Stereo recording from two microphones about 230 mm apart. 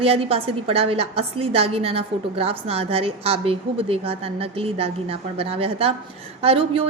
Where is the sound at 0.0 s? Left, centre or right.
Right.